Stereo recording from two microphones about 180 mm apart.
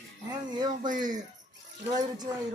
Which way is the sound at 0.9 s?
45° right (ahead or behind).